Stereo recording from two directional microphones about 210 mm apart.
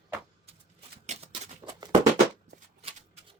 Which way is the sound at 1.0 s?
30° right (ahead or behind).